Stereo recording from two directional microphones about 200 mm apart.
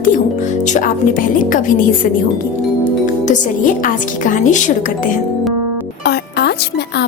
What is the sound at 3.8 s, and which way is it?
Speech, 40° left (ahead or behind).